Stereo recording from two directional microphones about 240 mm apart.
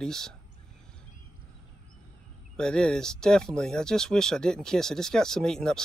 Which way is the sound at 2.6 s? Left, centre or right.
Centre.